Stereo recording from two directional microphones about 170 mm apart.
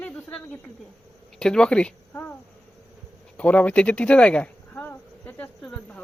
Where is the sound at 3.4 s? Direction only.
10° left (ahead or behind).